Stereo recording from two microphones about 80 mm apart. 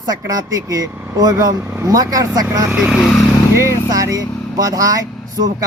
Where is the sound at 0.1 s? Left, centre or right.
Right.